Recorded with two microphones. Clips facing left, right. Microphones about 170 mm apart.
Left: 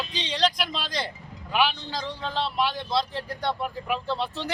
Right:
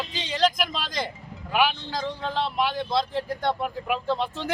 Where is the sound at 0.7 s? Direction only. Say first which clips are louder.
Right 1 dB; 45° right (ahead or behind).